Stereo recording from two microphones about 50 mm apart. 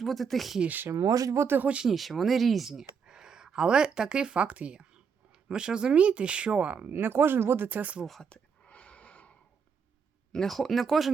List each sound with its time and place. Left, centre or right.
0.0 s speech: centre
0.9 s speech: right
1.8 s speech: centre; by 6.9 s right
6.9 s speech: right
7.7 s speech: right
8.2 s a sound: left
10.3 s speech: centre